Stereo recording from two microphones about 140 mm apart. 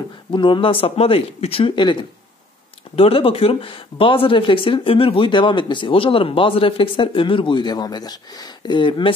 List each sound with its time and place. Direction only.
0.3 s speech: 35° left (ahead or behind)